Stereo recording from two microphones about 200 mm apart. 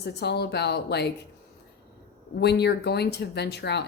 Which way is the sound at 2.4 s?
55° left (ahead or behind).